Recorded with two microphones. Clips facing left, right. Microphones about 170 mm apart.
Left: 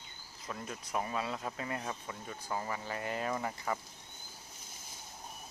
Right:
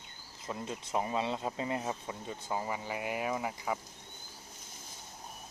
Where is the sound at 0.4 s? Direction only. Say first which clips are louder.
Right 3 dB; 25° right (ahead or behind).